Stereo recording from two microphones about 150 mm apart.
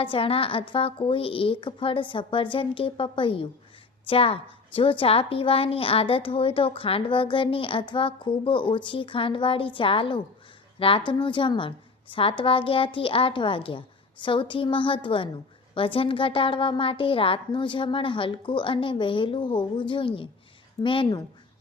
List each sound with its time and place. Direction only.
0.0 s a woman's voice: 35° left (ahead or behind)